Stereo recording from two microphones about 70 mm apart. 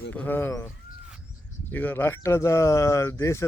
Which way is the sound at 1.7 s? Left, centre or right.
Left.